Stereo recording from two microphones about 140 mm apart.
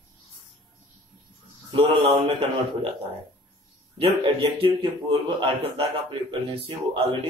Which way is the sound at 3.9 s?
40° right (ahead or behind).